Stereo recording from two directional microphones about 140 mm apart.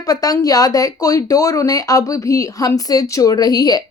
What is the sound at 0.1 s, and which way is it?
A woman's voice, 25° left (ahead or behind).